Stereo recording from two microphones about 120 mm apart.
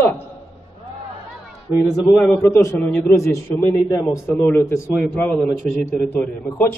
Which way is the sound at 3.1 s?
25° left (ahead or behind).